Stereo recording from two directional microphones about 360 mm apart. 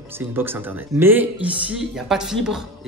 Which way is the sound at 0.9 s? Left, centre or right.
Centre.